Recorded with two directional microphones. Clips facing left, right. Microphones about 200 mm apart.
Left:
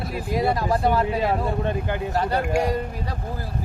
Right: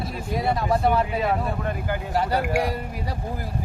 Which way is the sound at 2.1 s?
10° right (ahead or behind).